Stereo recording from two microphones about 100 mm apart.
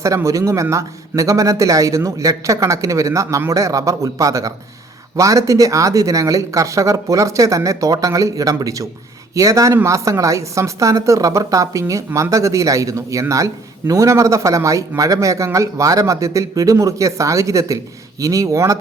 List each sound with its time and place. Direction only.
0.0 s a woman's voice: 30° right (ahead or behind)